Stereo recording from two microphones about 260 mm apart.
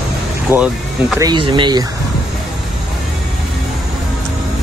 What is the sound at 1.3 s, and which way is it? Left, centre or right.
Speech, centre.